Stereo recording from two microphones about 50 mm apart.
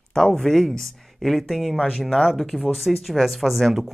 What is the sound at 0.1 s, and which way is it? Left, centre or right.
Speech, centre.